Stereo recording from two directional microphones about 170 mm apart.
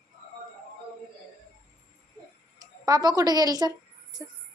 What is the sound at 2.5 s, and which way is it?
A woman's voice, 20° right (ahead or behind).